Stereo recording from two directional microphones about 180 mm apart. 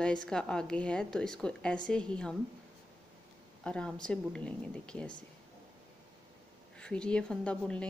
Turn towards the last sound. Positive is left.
turn(degrees=5)  # may be behind; listen again after turning